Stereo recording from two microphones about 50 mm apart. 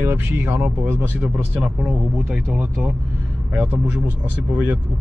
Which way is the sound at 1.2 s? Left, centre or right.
Centre.